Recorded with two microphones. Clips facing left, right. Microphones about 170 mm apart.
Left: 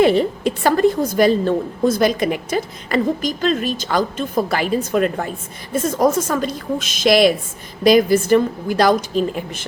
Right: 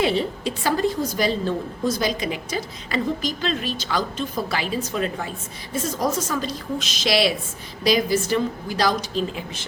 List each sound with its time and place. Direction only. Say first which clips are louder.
0.0 s a woman's voice: left 7 dB; 50° left (ahead or behind)